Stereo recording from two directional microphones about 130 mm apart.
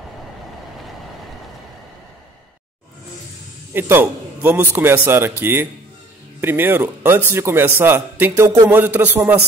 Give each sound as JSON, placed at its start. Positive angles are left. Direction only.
{"t": 3.7, "sound": "a man's voice", "side_deg": -15}